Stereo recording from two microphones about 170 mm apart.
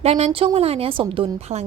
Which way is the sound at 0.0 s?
35° right (ahead or behind).